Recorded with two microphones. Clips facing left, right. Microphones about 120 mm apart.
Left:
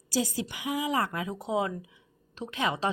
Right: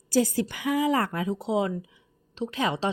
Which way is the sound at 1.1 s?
30° right (ahead or behind).